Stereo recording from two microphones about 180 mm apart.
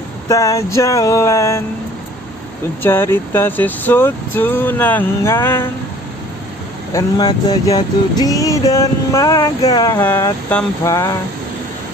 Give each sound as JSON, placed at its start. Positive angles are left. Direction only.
{"t": 0.3, "sound": "speech", "side_deg": 15}
{"t": 2.8, "sound": "speech", "side_deg": 10}
{"t": 6.9, "sound": "speech", "side_deg": 20}
{"t": 9.9, "sound": "speech", "side_deg": 10}